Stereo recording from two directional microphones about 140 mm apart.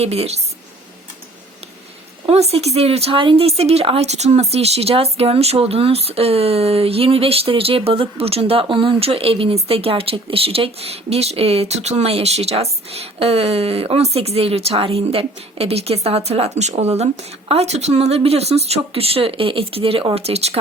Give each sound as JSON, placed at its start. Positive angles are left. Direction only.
{"t": 0.0, "sound": "speech", "side_deg": -50}
{"t": 2.2, "sound": "speech", "side_deg": -45}